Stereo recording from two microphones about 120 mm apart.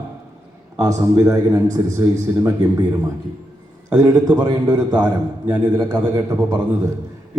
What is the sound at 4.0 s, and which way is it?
Speech, 30° right (ahead or behind).